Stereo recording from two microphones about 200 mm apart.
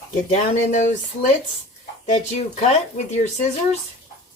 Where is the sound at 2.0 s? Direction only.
35° left (ahead or behind).